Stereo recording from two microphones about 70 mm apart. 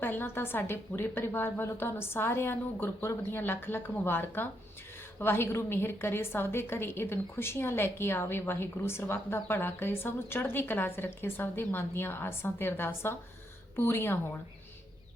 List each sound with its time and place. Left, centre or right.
0.0 s a woman's voice: left